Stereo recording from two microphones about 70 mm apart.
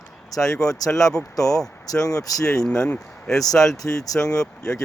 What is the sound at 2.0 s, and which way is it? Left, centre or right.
Speech, left.